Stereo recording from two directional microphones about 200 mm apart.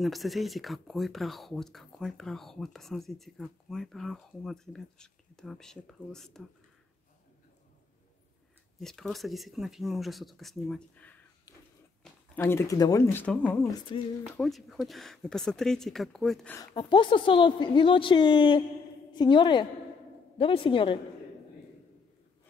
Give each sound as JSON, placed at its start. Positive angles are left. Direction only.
{"t": 0.0, "sound": "speech", "side_deg": 0}
{"t": 8.7, "sound": "speech", "side_deg": 0}
{"t": 12.4, "sound": "speech", "side_deg": 15}
{"t": 13.7, "sound": "a woman's voice", "side_deg": 20}
{"t": 14.3, "sound": "speech", "side_deg": 0}
{"t": 16.7, "sound": "a woman's voice", "side_deg": 25}